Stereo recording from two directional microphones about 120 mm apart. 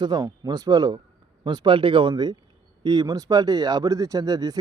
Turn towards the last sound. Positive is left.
turn(degrees=-35)  # may be behind; listen again after turning